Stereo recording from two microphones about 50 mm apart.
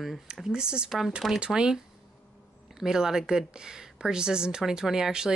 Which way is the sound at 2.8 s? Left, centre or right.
Centre.